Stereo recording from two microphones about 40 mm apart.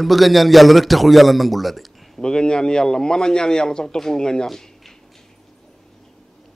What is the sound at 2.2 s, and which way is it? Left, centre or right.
A man's voice, centre.